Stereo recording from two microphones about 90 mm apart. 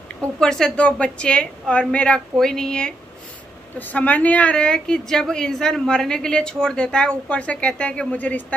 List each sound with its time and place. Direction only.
0.4 s a woman's voice: 5° left (ahead or behind)